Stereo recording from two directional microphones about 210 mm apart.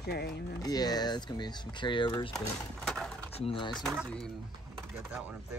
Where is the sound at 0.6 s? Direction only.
20° left (ahead or behind).